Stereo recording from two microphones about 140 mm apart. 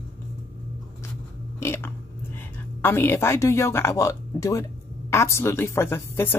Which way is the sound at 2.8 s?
15° left (ahead or behind).